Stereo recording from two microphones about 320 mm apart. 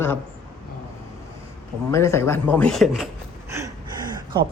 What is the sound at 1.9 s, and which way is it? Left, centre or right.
A man's voice, centre.